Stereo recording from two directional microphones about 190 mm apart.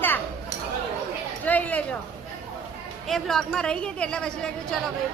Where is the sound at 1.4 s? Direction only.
10° left (ahead or behind).